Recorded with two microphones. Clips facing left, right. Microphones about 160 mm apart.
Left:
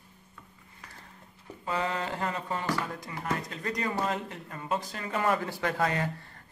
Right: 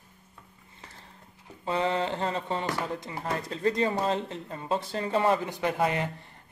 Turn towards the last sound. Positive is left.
turn(degrees=-20)  # may be behind; listen again after turning